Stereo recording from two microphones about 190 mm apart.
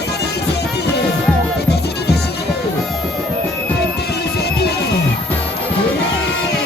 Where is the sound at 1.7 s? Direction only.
60° left (ahead or behind).